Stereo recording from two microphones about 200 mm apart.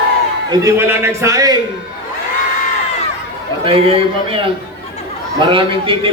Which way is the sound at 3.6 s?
30° right (ahead or behind).